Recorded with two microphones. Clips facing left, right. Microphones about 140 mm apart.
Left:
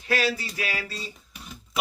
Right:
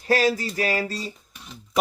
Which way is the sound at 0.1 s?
40° right (ahead or behind).